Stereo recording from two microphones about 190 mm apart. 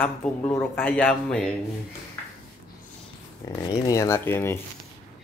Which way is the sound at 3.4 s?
20° left (ahead or behind).